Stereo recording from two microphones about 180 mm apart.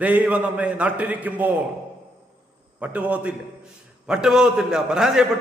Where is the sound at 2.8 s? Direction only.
10° right (ahead or behind).